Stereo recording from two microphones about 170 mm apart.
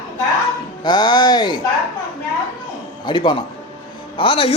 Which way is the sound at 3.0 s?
25° left (ahead or behind).